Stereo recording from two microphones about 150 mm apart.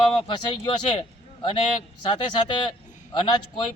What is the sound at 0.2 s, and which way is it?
A man's voice, 35° left (ahead or behind).